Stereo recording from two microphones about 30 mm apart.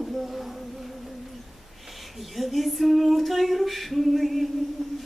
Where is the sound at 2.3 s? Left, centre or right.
Centre.